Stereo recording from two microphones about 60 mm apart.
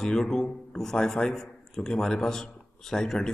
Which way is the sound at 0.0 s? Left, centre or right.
Centre.